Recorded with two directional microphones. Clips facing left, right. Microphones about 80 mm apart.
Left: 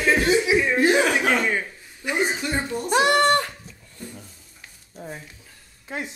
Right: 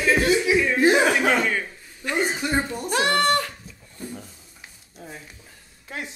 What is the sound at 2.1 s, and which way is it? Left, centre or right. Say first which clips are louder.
Chuckle: left 1 dB; centre.